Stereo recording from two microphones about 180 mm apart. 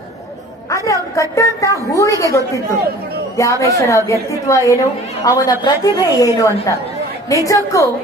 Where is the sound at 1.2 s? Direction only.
15° left (ahead or behind).